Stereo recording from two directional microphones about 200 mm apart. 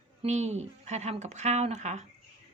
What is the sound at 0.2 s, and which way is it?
A woman's voice, 35° right (ahead or behind).